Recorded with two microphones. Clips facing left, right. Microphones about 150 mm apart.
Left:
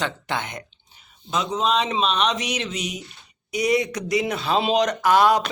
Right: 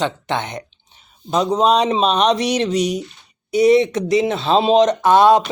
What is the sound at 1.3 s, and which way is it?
Speech, 35° right (ahead or behind).